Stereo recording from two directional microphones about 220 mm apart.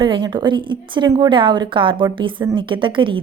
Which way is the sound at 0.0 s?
20° right (ahead or behind).